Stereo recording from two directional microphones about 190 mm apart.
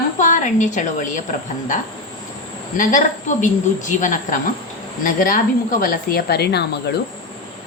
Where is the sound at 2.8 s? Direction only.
45° left (ahead or behind).